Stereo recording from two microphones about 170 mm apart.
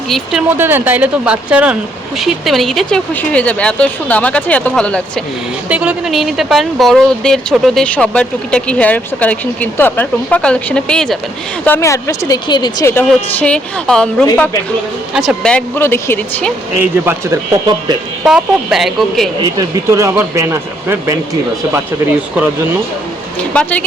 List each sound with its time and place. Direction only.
0.1 s speech: 5° right (ahead or behind)
5.6 s speech: 10° right (ahead or behind); by 12.9 s 25° left (ahead or behind)
12.9 s speech: 10° left (ahead or behind)
16.7 s speech: 15° right (ahead or behind)
18.3 s speech: centre (ahead or behind)
19.4 s speech: 20° right (ahead or behind)
23.4 s speech: 5° left (ahead or behind)